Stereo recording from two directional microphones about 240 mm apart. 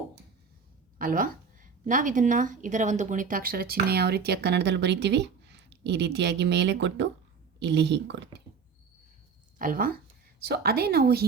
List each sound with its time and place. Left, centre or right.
0.9 s a woman's voice: right
9.6 s a woman's voice: right